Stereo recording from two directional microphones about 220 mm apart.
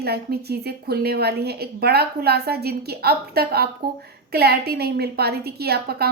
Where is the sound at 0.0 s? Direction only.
45° right (ahead or behind).